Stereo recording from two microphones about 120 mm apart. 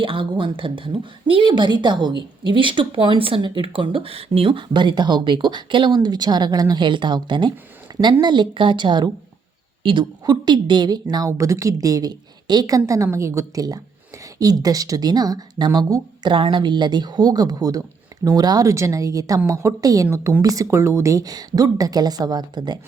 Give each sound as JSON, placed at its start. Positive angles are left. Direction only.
{"t": 0.0, "sound": "a woman's voice", "side_deg": -45}